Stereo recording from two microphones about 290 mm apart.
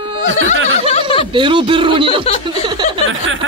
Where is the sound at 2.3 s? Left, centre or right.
Centre.